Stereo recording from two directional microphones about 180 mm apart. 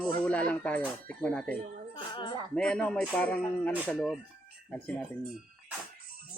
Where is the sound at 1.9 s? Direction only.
25° left (ahead or behind).